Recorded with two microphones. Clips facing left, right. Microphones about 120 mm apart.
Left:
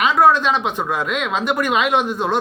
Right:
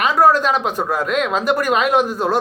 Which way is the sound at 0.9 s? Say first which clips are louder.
Right 3 dB; 45° right (ahead or behind).